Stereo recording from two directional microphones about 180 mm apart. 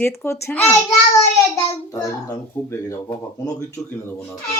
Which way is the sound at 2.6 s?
15° left (ahead or behind).